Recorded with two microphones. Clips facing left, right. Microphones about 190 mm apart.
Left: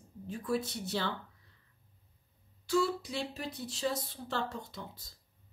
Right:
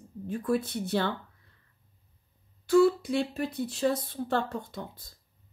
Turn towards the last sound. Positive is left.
turn(degrees=-55)  # may be behind; listen again after turning